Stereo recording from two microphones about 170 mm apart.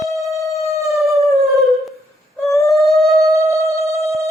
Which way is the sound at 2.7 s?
Centre (ahead or behind).